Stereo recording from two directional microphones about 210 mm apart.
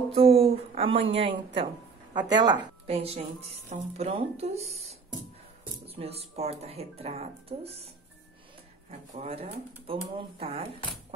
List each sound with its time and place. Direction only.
0.1 s a woman's voice: 25° right (ahead or behind)
9.1 s a woman's voice: 30° right (ahead or behind)